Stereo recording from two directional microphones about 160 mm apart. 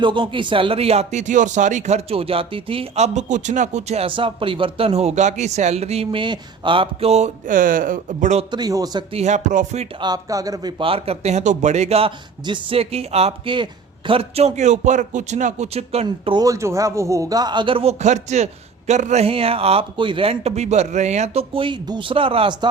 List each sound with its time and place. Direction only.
0.0 s speech: 30° right (ahead or behind); by 8.4 s 50° right (ahead or behind)
8.4 s a man's voice: 25° right (ahead or behind)
9.1 s a man's voice: 45° right (ahead or behind)
10.0 s a man's voice: 25° right (ahead or behind); by 16.0 s 40° right (ahead or behind)
16.0 s a man's voice: 30° right (ahead or behind)